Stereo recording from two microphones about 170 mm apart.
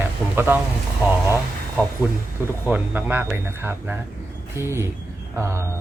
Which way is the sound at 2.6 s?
10° right (ahead or behind).